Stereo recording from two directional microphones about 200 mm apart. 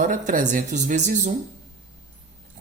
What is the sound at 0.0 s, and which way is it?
A woman's voice, 40° right (ahead or behind).